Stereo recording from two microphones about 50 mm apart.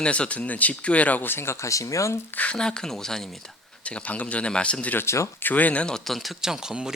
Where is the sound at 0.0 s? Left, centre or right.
Left.